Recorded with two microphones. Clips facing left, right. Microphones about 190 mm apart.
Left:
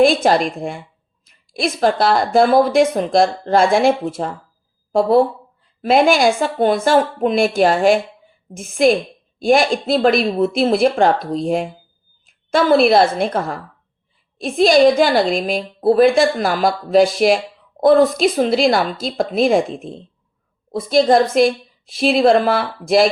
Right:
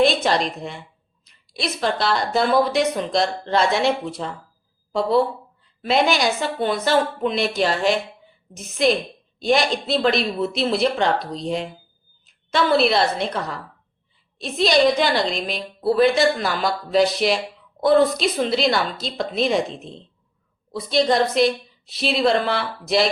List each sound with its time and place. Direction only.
0.0 s a woman's voice: 50° left (ahead or behind)